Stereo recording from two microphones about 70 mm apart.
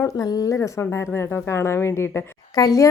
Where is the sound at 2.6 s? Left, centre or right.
Left.